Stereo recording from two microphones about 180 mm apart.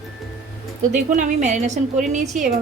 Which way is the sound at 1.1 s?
45° right (ahead or behind).